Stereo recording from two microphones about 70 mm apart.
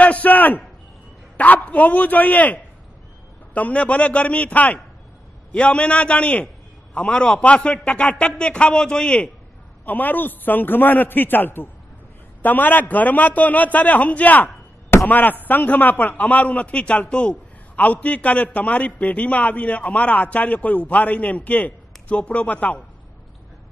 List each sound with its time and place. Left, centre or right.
0.0 s a sound: left
1.3 s a man's voice: left
9.8 s a man's voice: left